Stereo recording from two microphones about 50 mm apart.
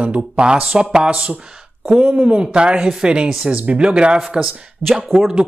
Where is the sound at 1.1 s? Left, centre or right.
Right.